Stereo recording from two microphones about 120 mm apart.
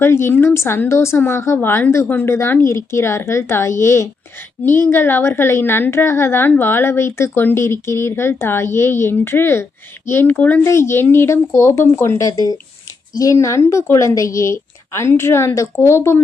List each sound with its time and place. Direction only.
0.0 s a woman's voice: 20° left (ahead or behind)